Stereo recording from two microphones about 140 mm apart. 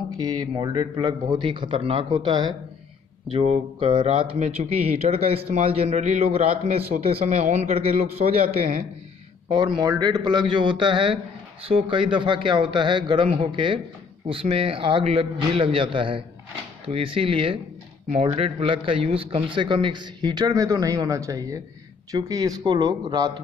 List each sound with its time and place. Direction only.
0.2 s a man's voice: 30° right (ahead or behind)
4.4 s a man's voice: 50° right (ahead or behind)
9.5 s a man's voice: 35° right (ahead or behind)